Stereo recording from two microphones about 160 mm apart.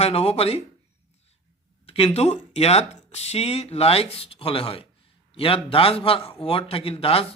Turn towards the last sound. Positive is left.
turn(degrees=35)  # may be behind; listen again after turning